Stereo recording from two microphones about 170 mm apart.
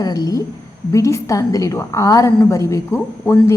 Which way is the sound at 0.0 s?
20° left (ahead or behind).